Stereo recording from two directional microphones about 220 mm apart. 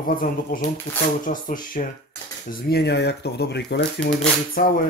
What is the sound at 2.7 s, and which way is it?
Speech, 50° left (ahead or behind).